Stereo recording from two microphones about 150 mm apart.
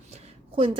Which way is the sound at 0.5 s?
40° right (ahead or behind).